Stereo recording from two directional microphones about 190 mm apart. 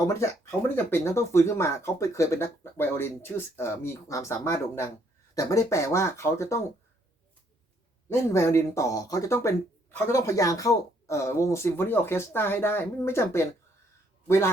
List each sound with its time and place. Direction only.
0.0 s speech: 15° left (ahead or behind)
8.1 s speech: 15° left (ahead or behind)